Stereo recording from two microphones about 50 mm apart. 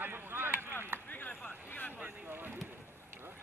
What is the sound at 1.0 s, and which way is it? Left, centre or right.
Chop, left.